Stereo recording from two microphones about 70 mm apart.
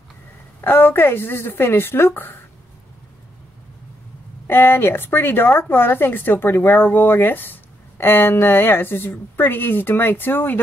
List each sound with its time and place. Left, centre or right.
0.6 s a woman's voice: left
4.5 s a woman's voice: left